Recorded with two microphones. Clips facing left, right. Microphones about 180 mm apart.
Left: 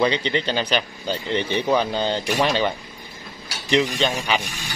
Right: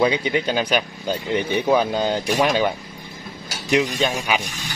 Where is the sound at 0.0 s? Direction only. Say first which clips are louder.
Right 2 dB; 10° right (ahead or behind).